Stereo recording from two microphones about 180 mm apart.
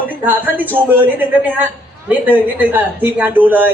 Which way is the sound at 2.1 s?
10° right (ahead or behind).